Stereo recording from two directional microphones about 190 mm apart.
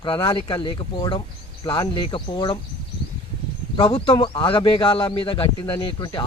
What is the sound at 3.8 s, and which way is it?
Speech, 25° left (ahead or behind).